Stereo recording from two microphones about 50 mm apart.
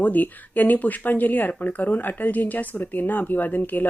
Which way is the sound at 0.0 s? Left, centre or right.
Left.